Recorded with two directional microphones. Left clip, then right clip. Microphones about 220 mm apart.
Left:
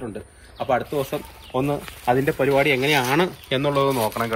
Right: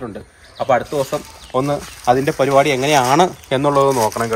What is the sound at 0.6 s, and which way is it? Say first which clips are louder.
Speech: right 6 dB; 5° right (ahead or behind).